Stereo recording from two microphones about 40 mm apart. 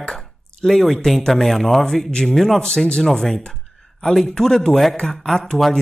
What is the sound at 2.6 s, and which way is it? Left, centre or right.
Speech, centre.